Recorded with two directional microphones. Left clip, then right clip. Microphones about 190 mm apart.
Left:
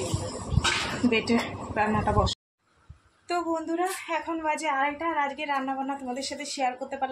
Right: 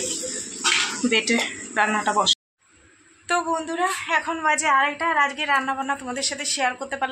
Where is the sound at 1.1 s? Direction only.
Centre (ahead or behind).